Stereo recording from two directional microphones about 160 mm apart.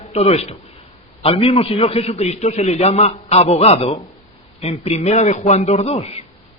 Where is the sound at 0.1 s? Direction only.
40° left (ahead or behind).